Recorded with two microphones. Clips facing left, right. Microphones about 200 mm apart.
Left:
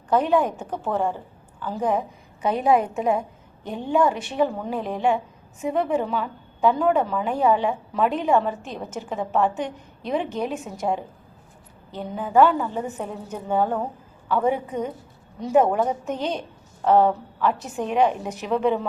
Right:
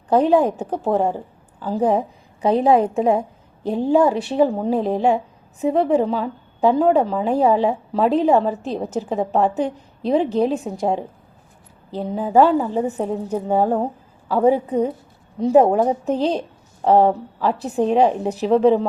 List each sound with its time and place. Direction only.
0.1 s a woman's voice: 35° right (ahead or behind)